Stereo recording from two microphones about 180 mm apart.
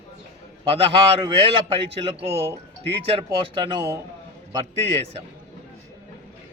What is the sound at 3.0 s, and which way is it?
Speech, 30° right (ahead or behind).